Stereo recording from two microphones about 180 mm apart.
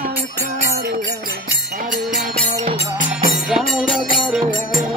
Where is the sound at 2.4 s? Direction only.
40° right (ahead or behind).